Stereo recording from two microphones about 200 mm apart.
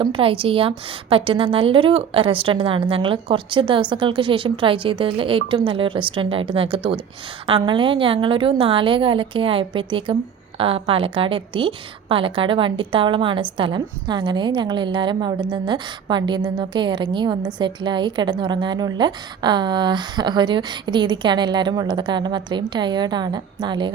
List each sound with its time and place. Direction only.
0.0 s a woman's voice: 25° right (ahead or behind)